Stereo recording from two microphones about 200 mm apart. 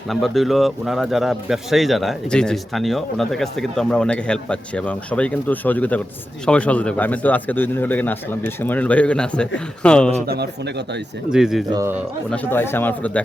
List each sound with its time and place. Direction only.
0.1 s a man's voice: centre (ahead or behind)
10.2 s a man's voice: 55° right (ahead or behind)
11.3 s speech: centre (ahead or behind)
11.7 s a man's voice: 10° right (ahead or behind)
12.3 s a man's voice: 10° left (ahead or behind)